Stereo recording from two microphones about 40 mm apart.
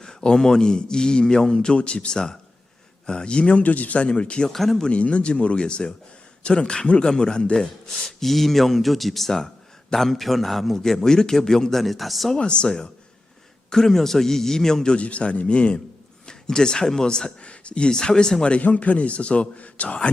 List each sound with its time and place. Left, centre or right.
0.0 s a man's voice: centre
1.7 s a man's voice: left
2.1 s a man's voice: centre
4.4 s a man's voice: centre
4.9 s a man's voice: left
7.5 s a man's voice: centre
12.4 s a man's voice: left
12.6 s a man's voice: centre
14.9 s a man's voice: left
18.6 s a man's voice: left